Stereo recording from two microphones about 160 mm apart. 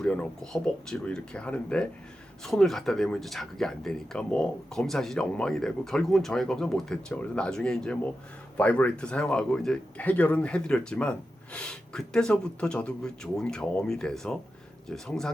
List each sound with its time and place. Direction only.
0.0 s speech: 5° left (ahead or behind)